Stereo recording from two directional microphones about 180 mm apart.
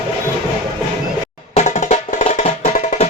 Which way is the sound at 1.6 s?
40° left (ahead or behind).